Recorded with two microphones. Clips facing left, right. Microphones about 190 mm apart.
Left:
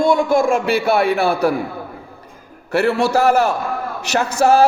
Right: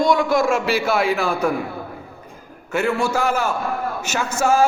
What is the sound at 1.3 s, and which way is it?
Speech, 35° left (ahead or behind).